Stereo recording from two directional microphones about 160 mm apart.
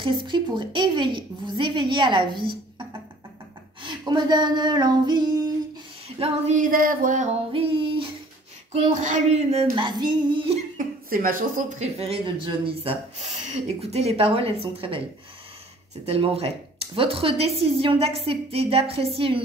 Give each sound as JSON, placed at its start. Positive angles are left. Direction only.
{"t": 0.0, "sound": "a woman's voice", "side_deg": -30}
{"t": 3.8, "sound": "a woman's voice", "side_deg": -25}
{"t": 6.0, "sound": "female singing", "side_deg": -40}
{"t": 6.5, "sound": "a sound", "side_deg": -60}
{"t": 7.5, "sound": "female singing", "side_deg": -35}
{"t": 8.7, "sound": "speech", "side_deg": -45}
{"t": 9.8, "sound": "a woman's voice", "side_deg": -30}
{"t": 10.8, "sound": "speech", "side_deg": -60}
{"t": 11.8, "sound": "a woman's voice", "side_deg": -40}
{"t": 16.1, "sound": "a woman's voice", "side_deg": -40}